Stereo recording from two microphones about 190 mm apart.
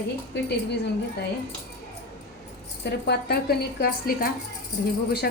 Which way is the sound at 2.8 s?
60° left (ahead or behind).